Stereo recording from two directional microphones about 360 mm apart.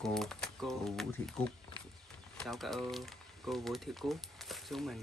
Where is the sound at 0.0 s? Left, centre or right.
Centre.